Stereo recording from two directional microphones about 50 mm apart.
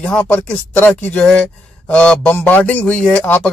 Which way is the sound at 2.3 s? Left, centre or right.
Left.